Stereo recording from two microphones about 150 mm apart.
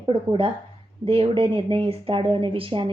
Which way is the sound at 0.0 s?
35° right (ahead or behind).